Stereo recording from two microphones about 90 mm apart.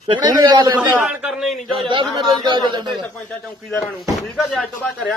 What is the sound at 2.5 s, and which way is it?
Speech, 60° right (ahead or behind).